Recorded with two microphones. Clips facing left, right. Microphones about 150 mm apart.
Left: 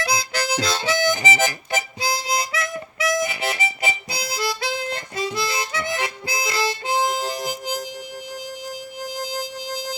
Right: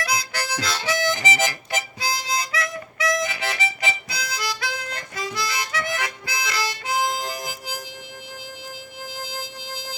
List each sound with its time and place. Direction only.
0.0 s harmonica: 25° left (ahead or behind)
9.1 s music: 15° left (ahead or behind)